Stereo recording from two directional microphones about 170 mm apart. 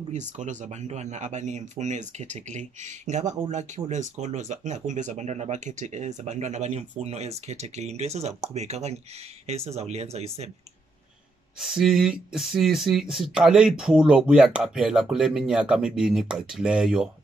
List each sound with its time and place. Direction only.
0.1 s speech: 45° right (ahead or behind)
11.6 s speech: centre (ahead or behind)